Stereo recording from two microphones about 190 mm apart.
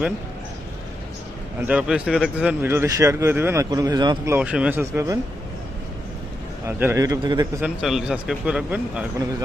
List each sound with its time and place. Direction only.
1.6 s speech: 5° right (ahead or behind); by 4.4 s 20° right (ahead or behind)
4.4 s speech: 5° right (ahead or behind)
6.7 s speech: 10° right (ahead or behind)
7.6 s a man's voice: centre (ahead or behind)